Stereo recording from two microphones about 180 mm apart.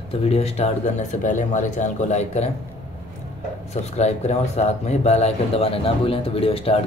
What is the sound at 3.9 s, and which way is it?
Speech, 35° left (ahead or behind).